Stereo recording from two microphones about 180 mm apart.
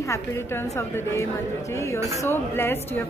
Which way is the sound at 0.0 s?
15° left (ahead or behind).